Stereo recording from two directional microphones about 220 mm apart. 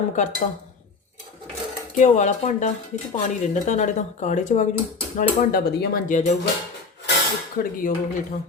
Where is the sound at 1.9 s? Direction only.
35° left (ahead or behind).